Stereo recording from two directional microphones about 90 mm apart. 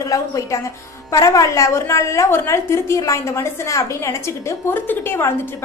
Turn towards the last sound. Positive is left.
turn(degrees=25)  # may be behind; listen again after turning